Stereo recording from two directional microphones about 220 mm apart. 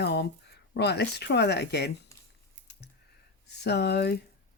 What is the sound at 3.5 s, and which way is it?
Speech, 50° left (ahead or behind).